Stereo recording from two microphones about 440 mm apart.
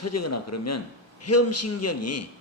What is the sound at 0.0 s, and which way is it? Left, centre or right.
Speech, left.